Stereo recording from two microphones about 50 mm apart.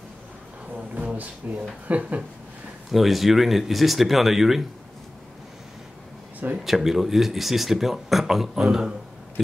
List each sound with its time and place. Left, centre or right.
0.9 s speech: right
2.9 s speech: centre
6.6 s speech: centre